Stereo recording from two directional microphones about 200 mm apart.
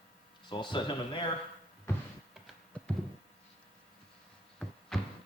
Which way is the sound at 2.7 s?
5° left (ahead or behind).